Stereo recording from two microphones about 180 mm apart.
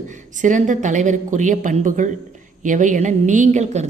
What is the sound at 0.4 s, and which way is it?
Speech, 45° right (ahead or behind).